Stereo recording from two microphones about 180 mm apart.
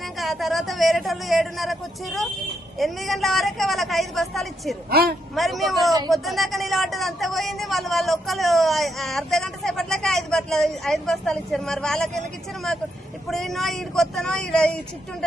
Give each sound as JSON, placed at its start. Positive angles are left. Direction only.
{"t": 0.2, "sound": "speech", "side_deg": 0}
{"t": 4.9, "sound": "speech", "side_deg": -60}
{"t": 5.3, "sound": "speech", "side_deg": 0}
{"t": 13.2, "sound": "speech", "side_deg": 0}